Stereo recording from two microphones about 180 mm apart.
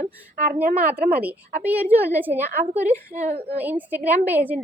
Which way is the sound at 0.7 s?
55° right (ahead or behind).